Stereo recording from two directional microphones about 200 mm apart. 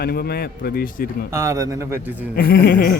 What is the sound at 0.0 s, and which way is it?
Speech, 50° left (ahead or behind).